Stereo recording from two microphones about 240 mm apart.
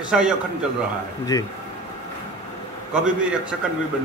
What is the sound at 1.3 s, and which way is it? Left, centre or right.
Speech, centre.